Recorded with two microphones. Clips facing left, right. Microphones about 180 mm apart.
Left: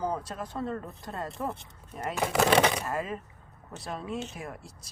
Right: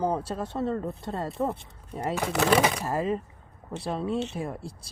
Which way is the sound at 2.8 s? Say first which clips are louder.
Right 5 dB; 30° right (ahead or behind).